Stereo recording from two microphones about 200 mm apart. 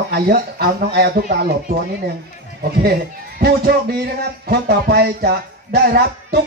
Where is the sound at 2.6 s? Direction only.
50° right (ahead or behind).